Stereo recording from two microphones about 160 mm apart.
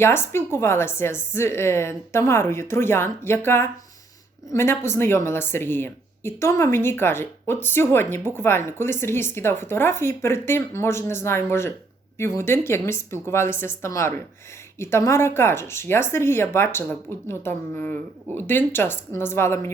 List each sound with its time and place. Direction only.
0.0 s speech: 15° left (ahead or behind)